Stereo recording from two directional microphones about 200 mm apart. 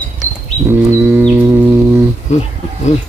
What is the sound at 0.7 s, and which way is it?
Livestock, 10° right (ahead or behind).